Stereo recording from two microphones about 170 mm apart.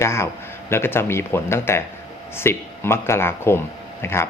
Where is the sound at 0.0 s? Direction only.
15° left (ahead or behind).